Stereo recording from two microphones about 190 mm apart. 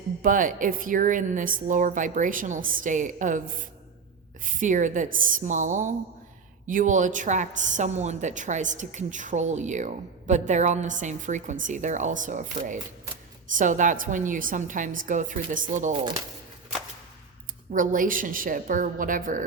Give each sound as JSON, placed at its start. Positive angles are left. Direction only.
{"t": 0.2, "sound": "a woman's voice", "side_deg": -45}
{"t": 4.4, "sound": "a woman's voice", "side_deg": -40}
{"t": 17.7, "sound": "a woman's voice", "side_deg": -45}